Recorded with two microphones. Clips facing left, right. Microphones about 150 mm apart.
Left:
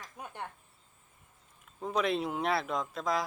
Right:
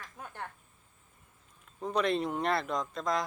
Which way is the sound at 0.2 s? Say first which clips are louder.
Left 1 dB; 15° left (ahead or behind).